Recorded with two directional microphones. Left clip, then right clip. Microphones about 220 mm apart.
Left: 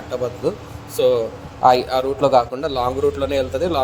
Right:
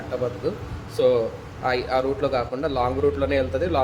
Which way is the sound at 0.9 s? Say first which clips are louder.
Left 3 dB; 20° left (ahead or behind).